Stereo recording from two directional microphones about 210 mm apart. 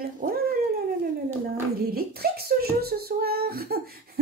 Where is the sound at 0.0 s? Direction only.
45° right (ahead or behind).